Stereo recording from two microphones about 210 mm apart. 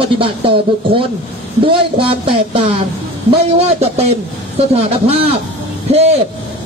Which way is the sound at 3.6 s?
30° right (ahead or behind).